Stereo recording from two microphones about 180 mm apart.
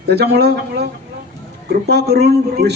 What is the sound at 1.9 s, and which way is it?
Speech, 65° right (ahead or behind).